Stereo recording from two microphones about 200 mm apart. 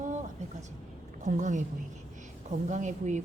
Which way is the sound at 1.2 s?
40° right (ahead or behind).